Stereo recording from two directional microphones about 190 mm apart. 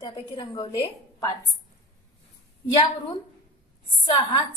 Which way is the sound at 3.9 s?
20° left (ahead or behind).